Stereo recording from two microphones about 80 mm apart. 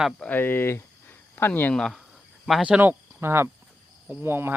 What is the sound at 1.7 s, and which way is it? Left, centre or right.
Speech, centre.